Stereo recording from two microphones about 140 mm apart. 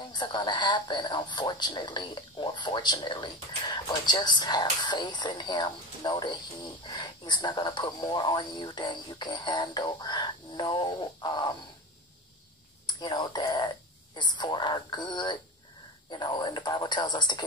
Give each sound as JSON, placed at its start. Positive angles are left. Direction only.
{"t": 0.1, "sound": "speech", "side_deg": 30}
{"t": 12.8, "sound": "speech", "side_deg": 30}